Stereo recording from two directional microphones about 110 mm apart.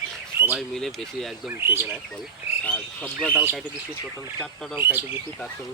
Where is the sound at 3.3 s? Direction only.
20° right (ahead or behind).